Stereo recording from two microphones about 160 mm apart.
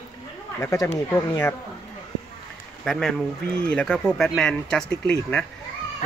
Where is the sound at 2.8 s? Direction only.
5° left (ahead or behind).